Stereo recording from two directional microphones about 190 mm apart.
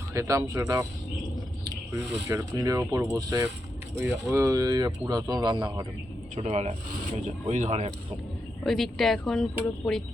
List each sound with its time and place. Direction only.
0.1 s speech: 15° right (ahead or behind)
2.3 s speech: 15° right (ahead or behind)
6.3 s speech: 35° right (ahead or behind)
8.6 s speech: centre (ahead or behind)